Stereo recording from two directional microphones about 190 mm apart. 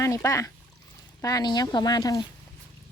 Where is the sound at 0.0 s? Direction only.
15° left (ahead or behind).